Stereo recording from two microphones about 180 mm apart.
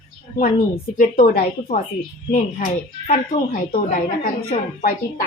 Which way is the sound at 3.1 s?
50° left (ahead or behind).